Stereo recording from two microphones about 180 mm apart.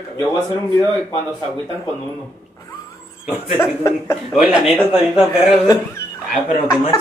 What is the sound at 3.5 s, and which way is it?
Speech, 15° left (ahead or behind).